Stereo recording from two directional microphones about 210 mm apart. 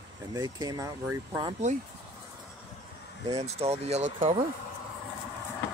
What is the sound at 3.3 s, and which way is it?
Speech, 30° right (ahead or behind).